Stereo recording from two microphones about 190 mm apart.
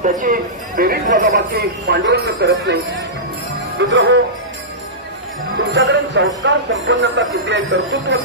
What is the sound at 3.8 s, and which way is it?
Speech, 70° right (ahead or behind).